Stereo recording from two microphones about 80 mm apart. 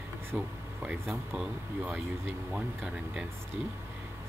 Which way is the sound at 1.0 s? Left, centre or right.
Right.